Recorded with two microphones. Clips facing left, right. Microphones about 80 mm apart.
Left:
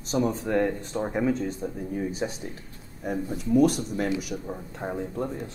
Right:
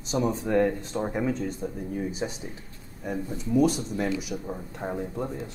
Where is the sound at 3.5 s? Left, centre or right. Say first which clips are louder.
Left 2 dB; centre.